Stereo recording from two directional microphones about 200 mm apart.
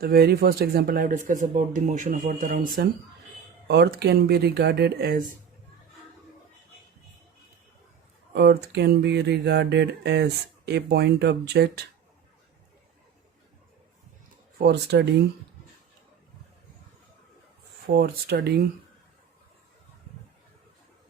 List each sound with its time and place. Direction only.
0.0 s speech: 50° right (ahead or behind)
8.3 s speech: 55° right (ahead or behind)
14.6 s speech: 55° right (ahead or behind)
17.8 s speech: 50° right (ahead or behind)